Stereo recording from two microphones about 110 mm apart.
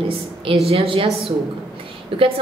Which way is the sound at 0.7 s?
60° right (ahead or behind).